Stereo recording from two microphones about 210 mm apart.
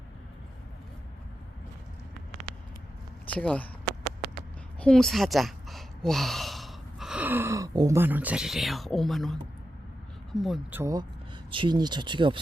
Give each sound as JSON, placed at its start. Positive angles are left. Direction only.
{"t": 3.2, "sound": "speech", "side_deg": 5}
{"t": 4.8, "sound": "speech", "side_deg": 5}
{"t": 10.4, "sound": "speech", "side_deg": -5}